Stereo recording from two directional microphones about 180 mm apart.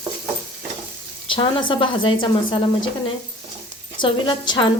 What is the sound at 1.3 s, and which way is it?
Speech, 25° left (ahead or behind).